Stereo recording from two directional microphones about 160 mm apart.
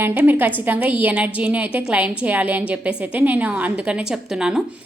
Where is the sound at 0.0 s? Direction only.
10° right (ahead or behind).